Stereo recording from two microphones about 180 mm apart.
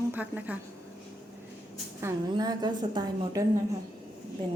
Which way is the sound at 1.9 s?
20° right (ahead or behind).